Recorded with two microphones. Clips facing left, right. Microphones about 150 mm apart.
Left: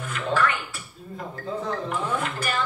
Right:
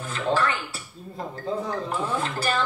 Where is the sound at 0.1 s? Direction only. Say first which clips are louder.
Even; 30° right (ahead or behind).